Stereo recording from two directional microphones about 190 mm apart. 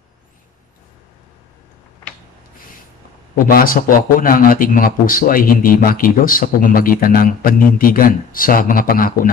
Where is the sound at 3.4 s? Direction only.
50° left (ahead or behind).